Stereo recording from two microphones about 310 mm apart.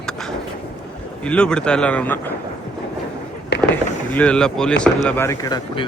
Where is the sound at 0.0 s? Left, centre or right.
Centre.